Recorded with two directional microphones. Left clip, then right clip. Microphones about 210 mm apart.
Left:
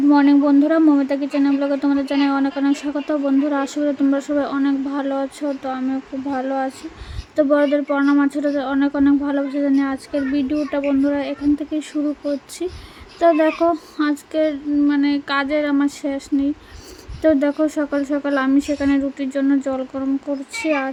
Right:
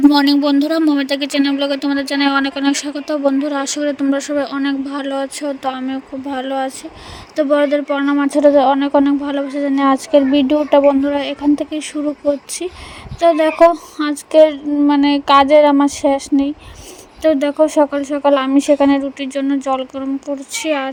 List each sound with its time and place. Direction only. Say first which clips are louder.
0.6 s a man's voice: even; 5° left (ahead or behind)
0.9 s speech: right 2 dB; 50° right (ahead or behind); by 11.9 s 30° right (ahead or behind)
13.1 s speech: right 4 dB; 25° right (ahead or behind)